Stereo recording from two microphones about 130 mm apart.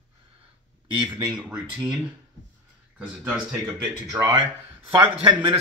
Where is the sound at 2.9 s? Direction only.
10° right (ahead or behind).